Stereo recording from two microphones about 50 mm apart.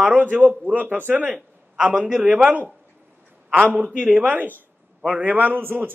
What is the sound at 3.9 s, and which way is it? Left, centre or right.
Speech, right.